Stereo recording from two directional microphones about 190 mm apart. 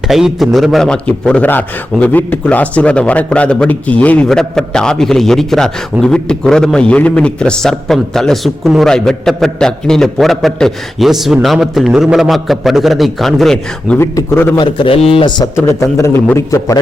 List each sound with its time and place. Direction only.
0.1 s a man's voice: centre (ahead or behind)
14.0 s a man's voice: 10° left (ahead or behind)
14.6 s a man's voice: 25° left (ahead or behind)
15.5 s a man's voice: 15° left (ahead or behind)